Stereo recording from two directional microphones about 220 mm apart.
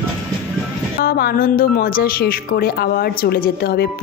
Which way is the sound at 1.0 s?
45° left (ahead or behind).